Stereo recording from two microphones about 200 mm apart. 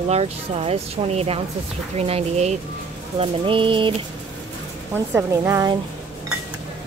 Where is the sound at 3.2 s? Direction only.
25° right (ahead or behind).